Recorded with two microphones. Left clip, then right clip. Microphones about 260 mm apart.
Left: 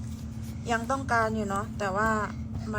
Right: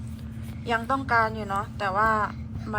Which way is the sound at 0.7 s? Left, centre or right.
Centre.